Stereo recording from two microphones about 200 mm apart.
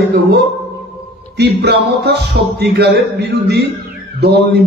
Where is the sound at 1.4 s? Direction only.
55° right (ahead or behind).